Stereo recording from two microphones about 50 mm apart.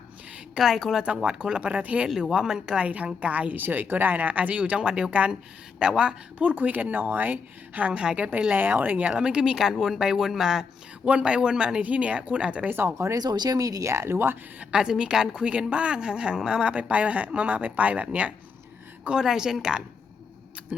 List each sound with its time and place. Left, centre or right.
0.6 s speech: centre
1.0 s speech: right
2.0 s speech: centre
2.3 s speech: centre
2.7 s speech: right
4.8 s speech: centre
6.5 s speech: right
8.5 s speech: right; by 10.7 s centre
11.0 s speech: right
12.6 s speech: right
13.8 s speech: right
14.8 s speech: centre
19.2 s speech: centre